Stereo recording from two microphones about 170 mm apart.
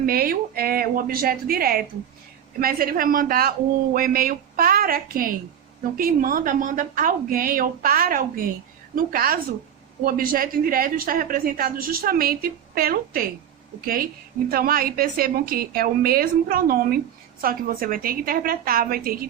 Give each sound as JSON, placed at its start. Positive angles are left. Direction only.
{"t": 0.0, "sound": "a woman's voice", "side_deg": -60}